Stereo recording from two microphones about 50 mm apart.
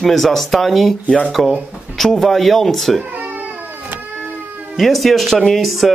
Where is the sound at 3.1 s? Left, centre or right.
Right.